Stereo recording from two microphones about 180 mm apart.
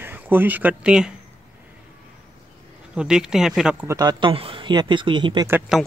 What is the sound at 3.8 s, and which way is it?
Speech, 20° right (ahead or behind).